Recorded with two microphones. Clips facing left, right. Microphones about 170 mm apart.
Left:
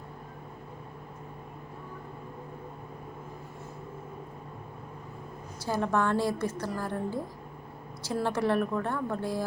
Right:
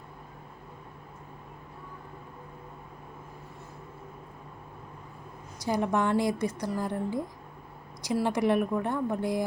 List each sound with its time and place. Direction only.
5.6 s a woman's voice: 15° right (ahead or behind)